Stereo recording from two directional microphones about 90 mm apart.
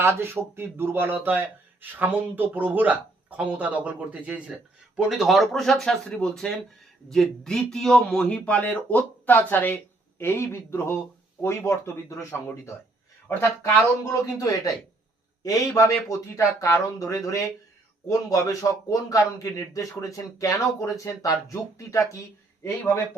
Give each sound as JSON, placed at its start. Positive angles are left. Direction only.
{"t": 0.0, "sound": "a man's voice", "side_deg": -25}